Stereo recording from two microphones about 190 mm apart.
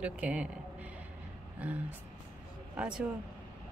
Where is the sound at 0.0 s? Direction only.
5° right (ahead or behind).